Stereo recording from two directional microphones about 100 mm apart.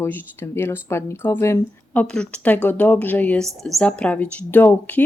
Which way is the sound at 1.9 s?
10° left (ahead or behind).